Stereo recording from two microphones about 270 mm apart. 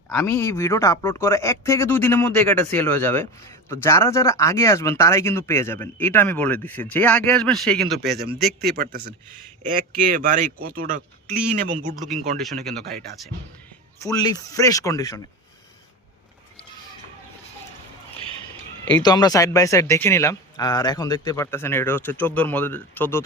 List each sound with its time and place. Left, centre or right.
0.1 s speech: centre
8.0 s speech: right
14.0 s speech: centre
19.0 s speech: centre